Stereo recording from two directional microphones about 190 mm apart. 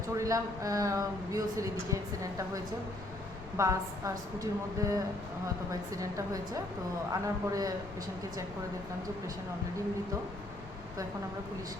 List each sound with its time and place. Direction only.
0.2 s speech: 15° right (ahead or behind)
3.6 s speech: 15° right (ahead or behind)